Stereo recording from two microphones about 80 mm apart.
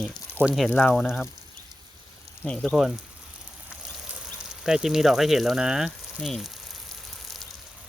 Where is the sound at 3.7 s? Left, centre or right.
Centre.